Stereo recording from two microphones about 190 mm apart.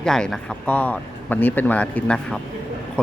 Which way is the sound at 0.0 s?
Centre (ahead or behind).